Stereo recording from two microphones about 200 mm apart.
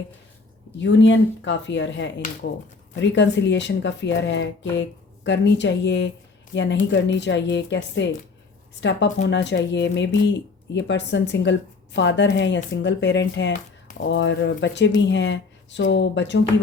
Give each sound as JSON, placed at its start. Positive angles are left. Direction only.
{"t": 0.8, "sound": "speech", "side_deg": 65}